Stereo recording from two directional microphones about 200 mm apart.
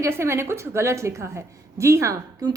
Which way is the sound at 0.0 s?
15° right (ahead or behind).